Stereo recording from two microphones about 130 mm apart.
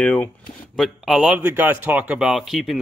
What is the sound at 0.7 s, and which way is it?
Speech, centre (ahead or behind).